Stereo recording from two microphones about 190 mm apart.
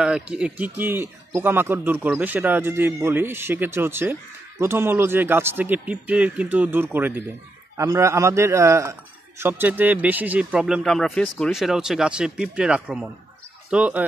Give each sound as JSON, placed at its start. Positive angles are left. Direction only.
{"t": 0.0, "sound": "a man's voice", "side_deg": -5}